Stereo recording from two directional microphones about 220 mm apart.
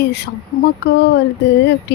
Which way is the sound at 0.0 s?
50° left (ahead or behind).